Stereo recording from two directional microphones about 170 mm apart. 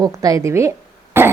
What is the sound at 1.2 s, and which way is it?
Cough, 15° right (ahead or behind).